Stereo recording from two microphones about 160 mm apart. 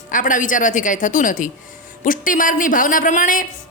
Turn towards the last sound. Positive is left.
turn(degrees=55)  # may be behind; listen again after turning